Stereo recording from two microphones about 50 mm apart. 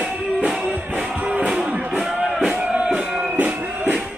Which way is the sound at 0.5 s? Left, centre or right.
Centre.